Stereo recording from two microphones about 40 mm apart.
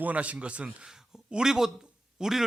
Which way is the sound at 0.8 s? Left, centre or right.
Centre.